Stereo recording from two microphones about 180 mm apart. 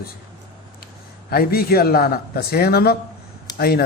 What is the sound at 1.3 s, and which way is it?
A man's voice, 55° left (ahead or behind).